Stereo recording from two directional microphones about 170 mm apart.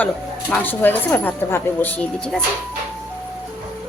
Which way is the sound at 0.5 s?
10° left (ahead or behind).